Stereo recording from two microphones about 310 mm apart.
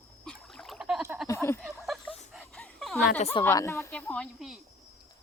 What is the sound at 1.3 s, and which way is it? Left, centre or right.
Speech, centre.